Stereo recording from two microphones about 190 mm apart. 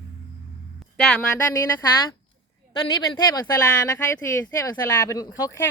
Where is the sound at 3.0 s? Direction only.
20° left (ahead or behind).